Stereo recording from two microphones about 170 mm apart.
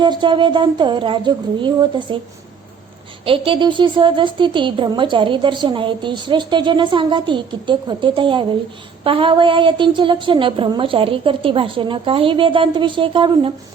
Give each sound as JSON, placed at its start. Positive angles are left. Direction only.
{"t": 0.0, "sound": "a woman's voice", "side_deg": -25}
{"t": 3.2, "sound": "a woman's voice", "side_deg": -30}